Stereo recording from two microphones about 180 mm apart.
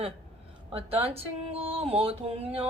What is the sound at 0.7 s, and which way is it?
Speech, 30° right (ahead or behind).